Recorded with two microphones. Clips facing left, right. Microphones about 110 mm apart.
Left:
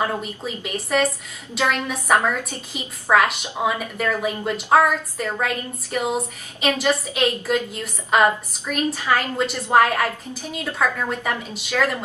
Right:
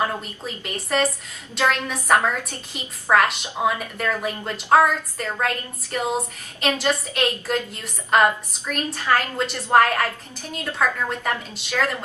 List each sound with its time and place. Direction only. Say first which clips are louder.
0.0 s a woman's voice: left 1 dB; 5° left (ahead or behind)